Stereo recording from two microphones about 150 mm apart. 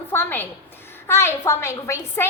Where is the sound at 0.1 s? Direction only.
15° left (ahead or behind).